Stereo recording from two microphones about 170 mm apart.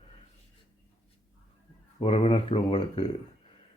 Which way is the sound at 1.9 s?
35° left (ahead or behind).